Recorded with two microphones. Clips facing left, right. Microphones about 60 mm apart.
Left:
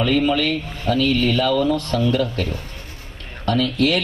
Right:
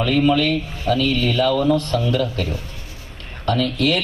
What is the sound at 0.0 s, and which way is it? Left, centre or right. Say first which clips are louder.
A man's voice: right 1 dB; left.